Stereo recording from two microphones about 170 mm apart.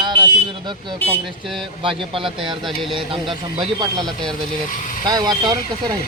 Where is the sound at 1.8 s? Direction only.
30° right (ahead or behind).